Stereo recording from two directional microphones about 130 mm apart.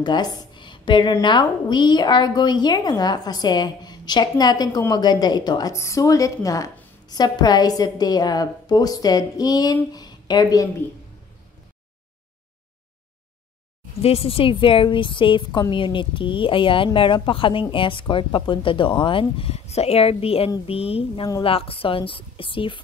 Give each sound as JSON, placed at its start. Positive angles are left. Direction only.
{"t": 0.0, "sound": "a woman's voice", "side_deg": 35}
{"t": 14.0, "sound": "a woman's voice", "side_deg": 50}